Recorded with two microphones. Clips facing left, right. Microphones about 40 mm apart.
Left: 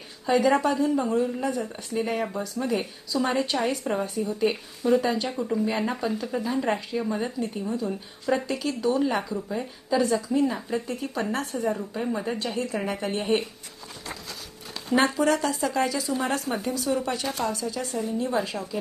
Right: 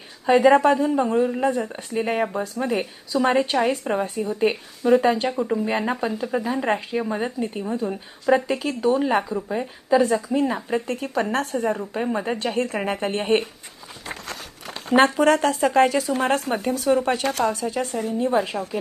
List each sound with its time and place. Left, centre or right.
0.3 s a woman's voice: right
10.8 s speech: right
11.8 s a woman's voice: right
14.8 s a woman's voice: right
18.2 s a woman's voice: right